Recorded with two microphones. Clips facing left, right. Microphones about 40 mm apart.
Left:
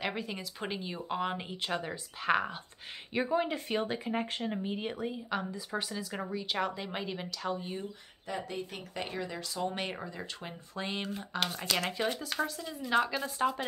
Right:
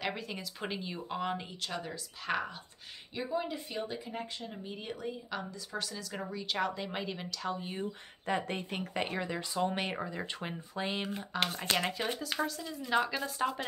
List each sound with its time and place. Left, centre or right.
0.0 s speech: centre
3.2 s speech: left
4.6 s speech: left; by 7.7 s centre
8.5 s speech: right
9.1 s speech: centre
12.2 s a woman's voice: centre